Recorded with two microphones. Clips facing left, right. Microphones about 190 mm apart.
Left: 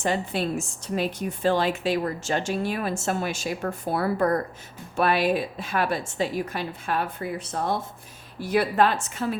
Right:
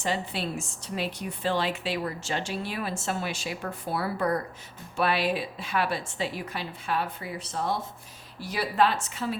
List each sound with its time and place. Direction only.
0.0 s a woman's voice: 50° left (ahead or behind)